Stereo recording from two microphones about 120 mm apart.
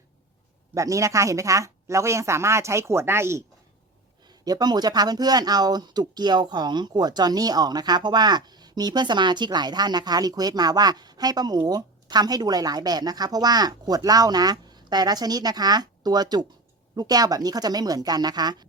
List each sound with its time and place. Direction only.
0.7 s speech: 25° right (ahead or behind)
4.3 s speech: 35° right (ahead or behind)